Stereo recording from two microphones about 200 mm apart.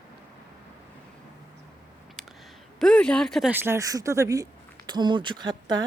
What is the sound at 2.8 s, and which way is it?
Speech, 5° left (ahead or behind).